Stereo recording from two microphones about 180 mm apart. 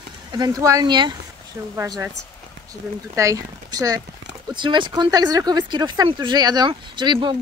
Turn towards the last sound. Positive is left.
turn(degrees=-25)  # may be behind; listen again after turning